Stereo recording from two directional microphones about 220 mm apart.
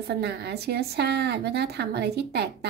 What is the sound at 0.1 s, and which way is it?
A woman's voice, 50° right (ahead or behind).